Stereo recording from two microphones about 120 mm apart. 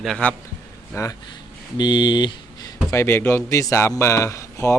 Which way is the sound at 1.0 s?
25° left (ahead or behind).